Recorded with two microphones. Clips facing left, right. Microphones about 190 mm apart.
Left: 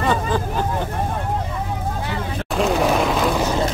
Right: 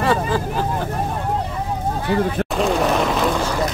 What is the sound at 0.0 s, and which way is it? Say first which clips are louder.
Speech: right 1 dB; 5° right (ahead or behind).